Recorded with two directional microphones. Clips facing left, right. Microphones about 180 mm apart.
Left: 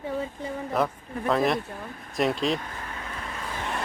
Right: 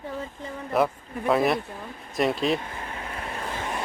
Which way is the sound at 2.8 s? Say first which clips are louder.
Right 2 dB; 30° right (ahead or behind).